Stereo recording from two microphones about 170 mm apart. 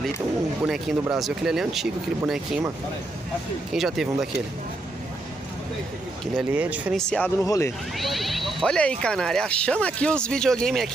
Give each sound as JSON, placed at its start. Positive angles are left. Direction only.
{"t": 0.7, "sound": "speech", "side_deg": 0}
{"t": 3.7, "sound": "speech", "side_deg": 0}
{"t": 6.3, "sound": "speech", "side_deg": -10}
{"t": 7.0, "sound": "speech", "side_deg": 5}
{"t": 7.4, "sound": "speech", "side_deg": 20}
{"t": 8.0, "sound": "speech", "side_deg": 0}